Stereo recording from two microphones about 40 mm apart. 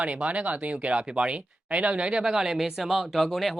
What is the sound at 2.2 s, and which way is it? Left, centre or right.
Speech, centre.